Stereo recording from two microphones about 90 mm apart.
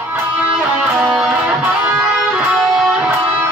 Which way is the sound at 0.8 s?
5° right (ahead or behind).